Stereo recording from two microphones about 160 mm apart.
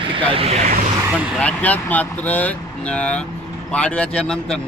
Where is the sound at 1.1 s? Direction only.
10° right (ahead or behind).